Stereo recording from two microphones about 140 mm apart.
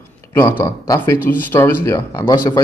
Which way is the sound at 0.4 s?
15° left (ahead or behind).